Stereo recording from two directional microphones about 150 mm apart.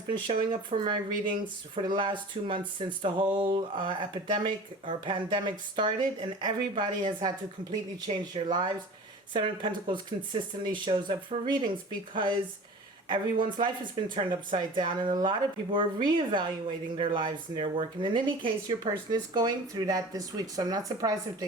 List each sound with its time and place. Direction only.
0.7 s speech: 35° right (ahead or behind)
13.4 s speech: 35° right (ahead or behind)